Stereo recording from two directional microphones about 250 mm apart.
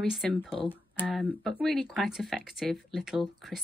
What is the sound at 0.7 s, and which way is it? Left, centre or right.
A woman's voice, centre.